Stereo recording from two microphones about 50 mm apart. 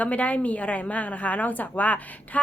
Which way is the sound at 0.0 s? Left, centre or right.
Left.